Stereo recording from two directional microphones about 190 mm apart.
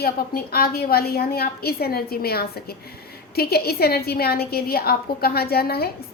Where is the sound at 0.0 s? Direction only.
50° left (ahead or behind).